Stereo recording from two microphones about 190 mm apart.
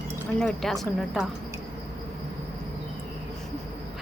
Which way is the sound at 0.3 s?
Centre (ahead or behind).